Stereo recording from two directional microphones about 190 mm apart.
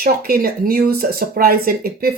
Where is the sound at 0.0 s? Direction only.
50° right (ahead or behind).